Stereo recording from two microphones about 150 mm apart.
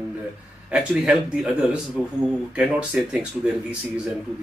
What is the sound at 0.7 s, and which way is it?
Speech, 5° right (ahead or behind).